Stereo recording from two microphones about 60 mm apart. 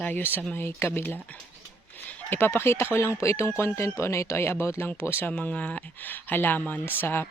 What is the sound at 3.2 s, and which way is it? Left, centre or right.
Speech, left.